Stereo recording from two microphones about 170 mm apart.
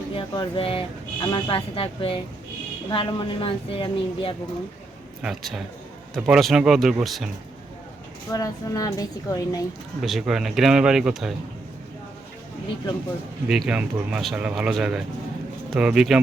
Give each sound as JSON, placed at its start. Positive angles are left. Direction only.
{"t": 0.1, "sound": "a woman's voice", "side_deg": 30}
{"t": 5.2, "sound": "speech", "side_deg": 0}
{"t": 8.3, "sound": "a woman's voice", "side_deg": 20}
{"t": 10.0, "sound": "speech", "side_deg": 0}
{"t": 13.5, "sound": "speech", "side_deg": -5}